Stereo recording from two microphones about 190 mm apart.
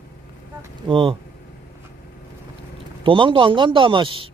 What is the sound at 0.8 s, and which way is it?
Speech, 30° right (ahead or behind).